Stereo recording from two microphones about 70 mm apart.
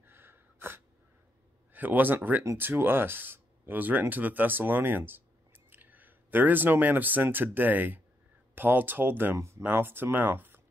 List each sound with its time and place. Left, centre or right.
0.0 s sneeze: right
1.7 s speech: right